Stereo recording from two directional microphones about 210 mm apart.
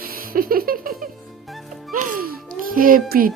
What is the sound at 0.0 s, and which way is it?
Music, 45° right (ahead or behind).